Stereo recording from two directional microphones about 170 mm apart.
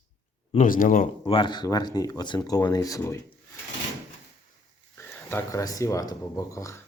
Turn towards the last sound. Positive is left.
turn(degrees=20)  # may be behind; listen again after turning